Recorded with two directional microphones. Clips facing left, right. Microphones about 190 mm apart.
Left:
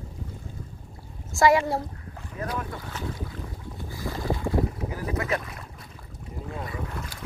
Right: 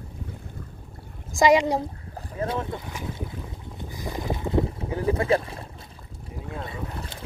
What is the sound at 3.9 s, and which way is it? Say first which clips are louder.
Boat: left 1 dB; 20° right (ahead or behind).